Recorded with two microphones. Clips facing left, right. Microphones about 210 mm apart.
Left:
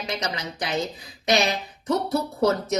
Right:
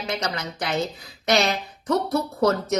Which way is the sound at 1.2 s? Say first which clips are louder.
Right 1 dB; 15° left (ahead or behind).